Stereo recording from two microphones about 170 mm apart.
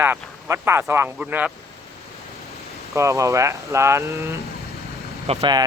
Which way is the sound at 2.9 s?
20° right (ahead or behind).